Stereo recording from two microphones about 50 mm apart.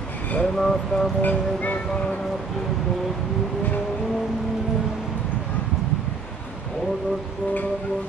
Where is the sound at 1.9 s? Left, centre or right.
Left.